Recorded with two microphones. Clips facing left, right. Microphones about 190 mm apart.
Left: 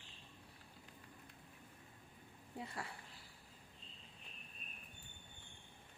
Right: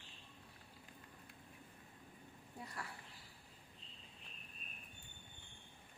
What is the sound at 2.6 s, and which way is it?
Speech, 25° left (ahead or behind).